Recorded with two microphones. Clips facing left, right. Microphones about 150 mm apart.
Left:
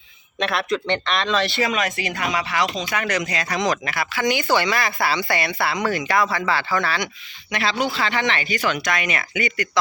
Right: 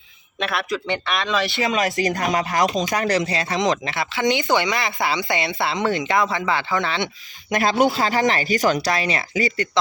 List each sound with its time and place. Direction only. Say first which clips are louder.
0.3 s speech: left 2 dB; centre (ahead or behind)
1.5 s speech: right 1 dB; 20° right (ahead or behind)
2.0 s speech: right 4 dB; 45° right (ahead or behind); by 7.1 s 20° right (ahead or behind)
7.5 s speech: right 5 dB; 45° right (ahead or behind); by 9.6 s 30° right (ahead or behind)